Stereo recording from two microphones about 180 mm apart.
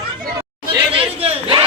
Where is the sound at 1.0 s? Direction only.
35° right (ahead or behind).